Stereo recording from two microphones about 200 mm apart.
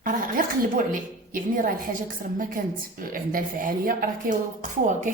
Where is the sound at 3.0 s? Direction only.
45° right (ahead or behind).